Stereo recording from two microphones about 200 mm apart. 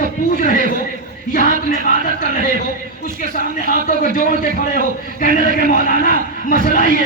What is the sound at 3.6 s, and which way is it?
Music, 45° left (ahead or behind).